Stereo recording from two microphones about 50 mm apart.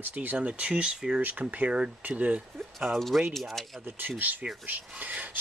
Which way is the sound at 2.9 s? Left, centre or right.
Centre.